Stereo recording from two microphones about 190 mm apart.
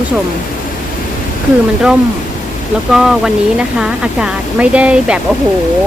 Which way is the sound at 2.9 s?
5° right (ahead or behind).